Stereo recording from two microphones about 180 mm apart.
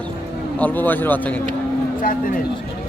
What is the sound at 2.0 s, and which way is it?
Speech, 50° left (ahead or behind).